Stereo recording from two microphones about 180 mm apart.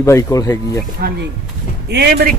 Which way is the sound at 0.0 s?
15° left (ahead or behind).